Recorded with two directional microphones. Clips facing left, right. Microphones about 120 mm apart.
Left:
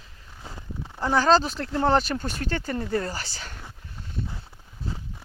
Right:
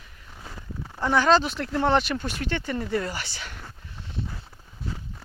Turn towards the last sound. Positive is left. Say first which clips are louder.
# even
turn(degrees=40)  # may be behind; listen again after turning